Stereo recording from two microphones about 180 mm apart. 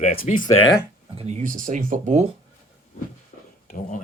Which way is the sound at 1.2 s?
35° right (ahead or behind).